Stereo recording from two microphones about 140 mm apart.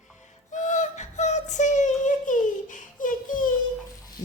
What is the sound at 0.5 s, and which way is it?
Child singing, 60° left (ahead or behind).